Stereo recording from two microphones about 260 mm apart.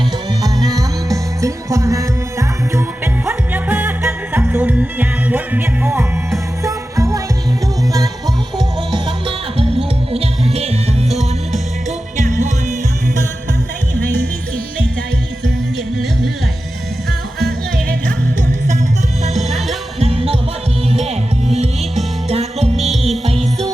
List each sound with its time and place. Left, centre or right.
0.4 s music: centre
3.2 s music: centre
8.5 s music: centre
11.1 s music: centre
12.1 s music: right
19.4 s music: centre
20.0 s music: right
22.3 s music: right
22.8 s music: centre
23.2 s music: right